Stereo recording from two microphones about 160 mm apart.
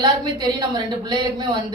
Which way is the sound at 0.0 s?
25° right (ahead or behind).